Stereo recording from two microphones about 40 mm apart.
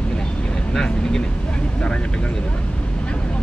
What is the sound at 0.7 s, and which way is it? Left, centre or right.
Speech, centre.